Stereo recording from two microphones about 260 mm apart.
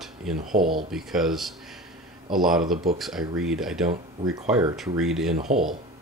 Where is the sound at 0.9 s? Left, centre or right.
Centre.